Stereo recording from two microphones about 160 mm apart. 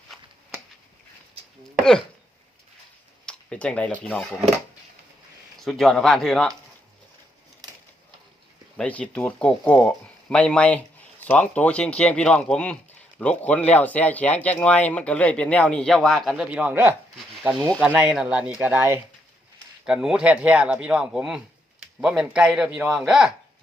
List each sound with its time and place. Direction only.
3.2 s speech: 5° left (ahead or behind)
5.5 s speech: centre (ahead or behind)
8.8 s speech: 10° left (ahead or behind)